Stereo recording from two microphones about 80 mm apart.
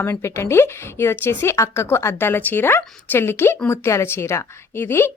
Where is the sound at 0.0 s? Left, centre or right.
Left.